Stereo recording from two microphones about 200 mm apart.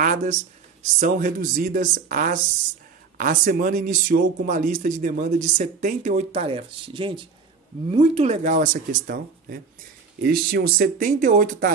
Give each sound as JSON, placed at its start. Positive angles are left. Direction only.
{"t": 0.0, "sound": "speech", "side_deg": -40}